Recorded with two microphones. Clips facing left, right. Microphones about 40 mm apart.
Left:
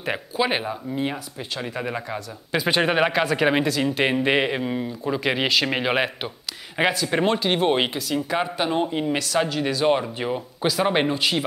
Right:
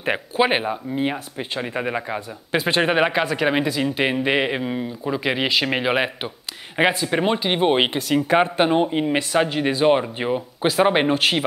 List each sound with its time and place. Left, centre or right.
0.0 s speech: right
2.7 s speech: centre
7.1 s speech: centre
7.9 s speech: right
8.8 s speech: centre
11.1 s speech: right